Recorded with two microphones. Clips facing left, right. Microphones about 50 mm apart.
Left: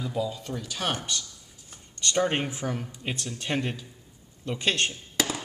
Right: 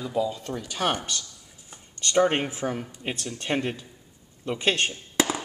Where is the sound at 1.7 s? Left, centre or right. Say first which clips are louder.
Right 1 dB; centre.